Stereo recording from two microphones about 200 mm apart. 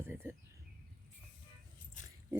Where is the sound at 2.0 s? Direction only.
40° left (ahead or behind).